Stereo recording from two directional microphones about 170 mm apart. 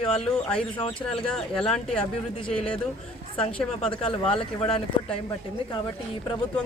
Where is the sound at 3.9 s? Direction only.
35° left (ahead or behind).